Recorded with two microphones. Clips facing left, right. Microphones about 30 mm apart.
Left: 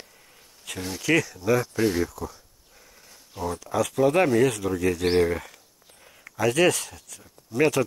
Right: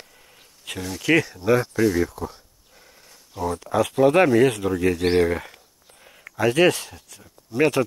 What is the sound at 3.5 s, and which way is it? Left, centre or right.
Speech, right.